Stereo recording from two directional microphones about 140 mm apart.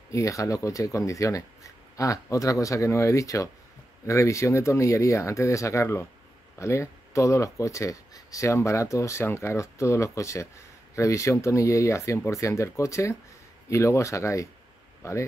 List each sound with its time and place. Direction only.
0.1 s speech: 25° left (ahead or behind)